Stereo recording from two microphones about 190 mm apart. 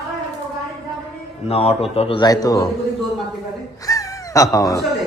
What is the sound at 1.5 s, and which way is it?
A man's voice, 30° left (ahead or behind).